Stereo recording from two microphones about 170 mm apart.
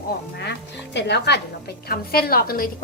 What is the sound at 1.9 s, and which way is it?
Speech, 65° left (ahead or behind).